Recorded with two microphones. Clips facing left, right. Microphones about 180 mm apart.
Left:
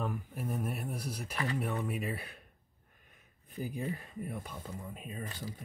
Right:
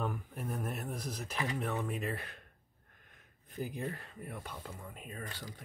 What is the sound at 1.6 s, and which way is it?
Speech, 10° left (ahead or behind).